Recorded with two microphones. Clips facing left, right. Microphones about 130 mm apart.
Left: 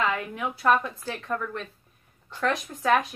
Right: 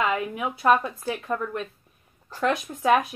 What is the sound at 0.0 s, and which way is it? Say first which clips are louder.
A woman's voice: right 2 dB; 15° right (ahead or behind).